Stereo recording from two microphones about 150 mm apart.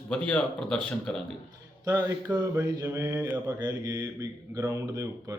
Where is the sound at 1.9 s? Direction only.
10° right (ahead or behind).